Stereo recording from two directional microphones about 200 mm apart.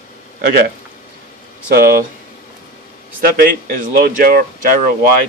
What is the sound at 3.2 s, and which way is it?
Speech, 45° right (ahead or behind).